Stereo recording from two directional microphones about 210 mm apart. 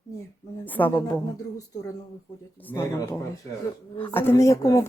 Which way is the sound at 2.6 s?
10° left (ahead or behind).